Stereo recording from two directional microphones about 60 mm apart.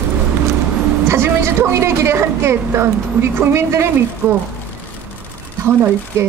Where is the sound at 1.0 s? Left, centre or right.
Right.